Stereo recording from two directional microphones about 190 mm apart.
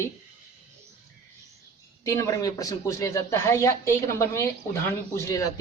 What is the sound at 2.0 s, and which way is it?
Speech, 15° left (ahead or behind).